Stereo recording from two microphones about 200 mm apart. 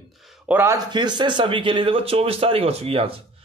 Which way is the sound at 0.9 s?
20° right (ahead or behind).